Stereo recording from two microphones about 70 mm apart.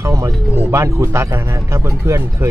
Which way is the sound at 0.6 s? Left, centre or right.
Right.